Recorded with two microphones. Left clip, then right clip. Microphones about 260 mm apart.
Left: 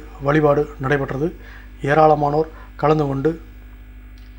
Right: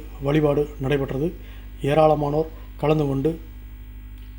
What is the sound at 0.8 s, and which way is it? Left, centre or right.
Speech, left.